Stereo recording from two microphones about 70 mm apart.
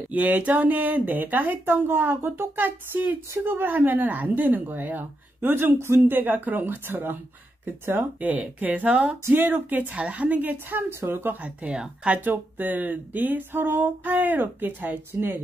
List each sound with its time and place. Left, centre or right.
0.1 s speech: right
8.2 s speech: right
11.4 s speech: centre
12.3 s speech: right